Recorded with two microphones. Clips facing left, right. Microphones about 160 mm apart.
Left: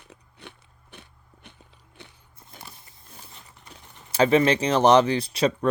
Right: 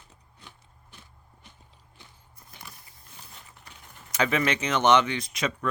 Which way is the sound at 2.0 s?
70° left (ahead or behind).